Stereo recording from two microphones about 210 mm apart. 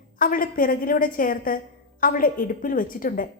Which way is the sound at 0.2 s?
40° left (ahead or behind).